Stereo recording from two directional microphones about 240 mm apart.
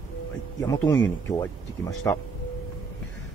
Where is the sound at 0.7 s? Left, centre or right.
Centre.